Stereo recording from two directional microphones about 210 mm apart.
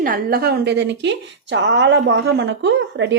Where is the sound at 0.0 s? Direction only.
45° right (ahead or behind).